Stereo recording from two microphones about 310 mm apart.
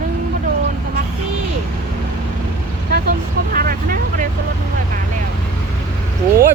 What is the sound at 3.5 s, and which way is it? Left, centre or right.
Vehicle, right.